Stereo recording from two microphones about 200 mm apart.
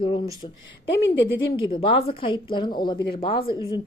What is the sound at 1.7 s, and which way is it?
Speech, 30° left (ahead or behind).